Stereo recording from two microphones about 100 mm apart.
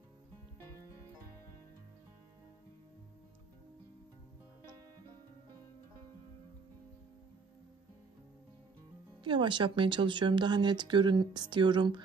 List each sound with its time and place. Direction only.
9.2 s speech: 55° right (ahead or behind)